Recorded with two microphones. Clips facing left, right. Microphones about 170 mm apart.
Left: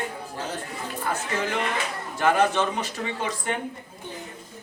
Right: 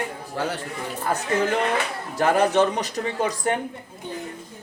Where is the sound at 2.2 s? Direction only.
40° right (ahead or behind).